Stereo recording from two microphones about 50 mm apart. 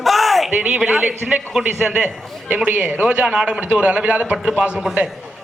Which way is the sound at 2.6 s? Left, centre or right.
Right.